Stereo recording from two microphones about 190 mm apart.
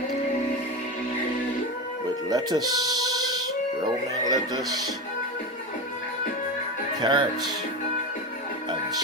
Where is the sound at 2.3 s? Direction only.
20° right (ahead or behind).